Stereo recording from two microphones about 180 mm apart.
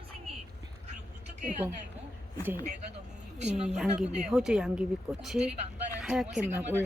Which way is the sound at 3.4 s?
40° right (ahead or behind).